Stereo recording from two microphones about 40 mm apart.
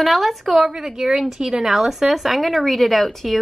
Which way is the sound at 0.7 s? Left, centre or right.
Centre.